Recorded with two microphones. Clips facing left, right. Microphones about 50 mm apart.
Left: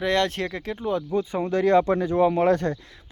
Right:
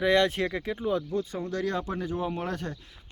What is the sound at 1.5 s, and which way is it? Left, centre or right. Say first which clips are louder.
Speech: left 11 dB; left.